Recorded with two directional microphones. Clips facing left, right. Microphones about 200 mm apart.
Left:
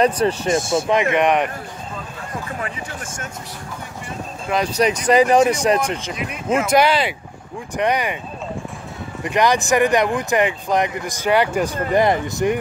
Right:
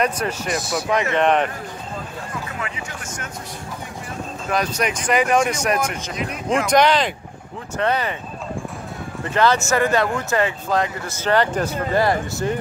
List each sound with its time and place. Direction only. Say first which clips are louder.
0.0 s speech: left 5 dB; 30° left (ahead or behind)
1.1 s speech: left 1 dB; 15° left (ahead or behind)
4.7 s speech: left 8 dB; 35° left (ahead or behind)
6.1 s speech: even; 5° left (ahead or behind)
9.2 s speech: left 1 dB; 15° left (ahead or behind)